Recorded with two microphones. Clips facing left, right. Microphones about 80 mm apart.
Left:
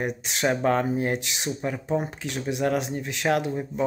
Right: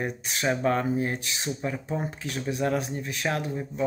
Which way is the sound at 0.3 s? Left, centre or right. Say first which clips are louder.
Left 2 dB; left.